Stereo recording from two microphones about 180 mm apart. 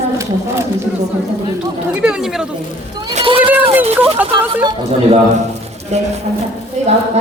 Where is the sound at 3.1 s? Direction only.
30° right (ahead or behind).